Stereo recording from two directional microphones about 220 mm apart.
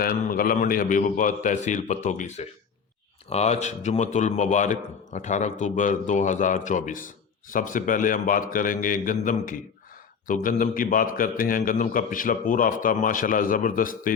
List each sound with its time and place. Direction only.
0.0 s a man's voice: 40° left (ahead or behind)